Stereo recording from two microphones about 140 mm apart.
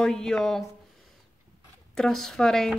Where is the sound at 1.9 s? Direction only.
5° left (ahead or behind).